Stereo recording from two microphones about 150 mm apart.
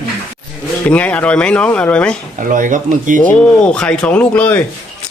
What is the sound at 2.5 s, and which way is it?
Speech, 60° right (ahead or behind).